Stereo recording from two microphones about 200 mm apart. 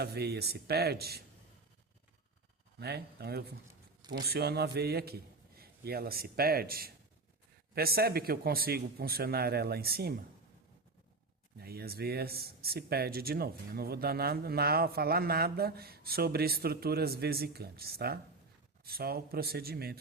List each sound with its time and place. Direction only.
0.0 s speech: 55° right (ahead or behind)
2.7 s speech: 55° right (ahead or behind)
11.6 s speech: 50° right (ahead or behind)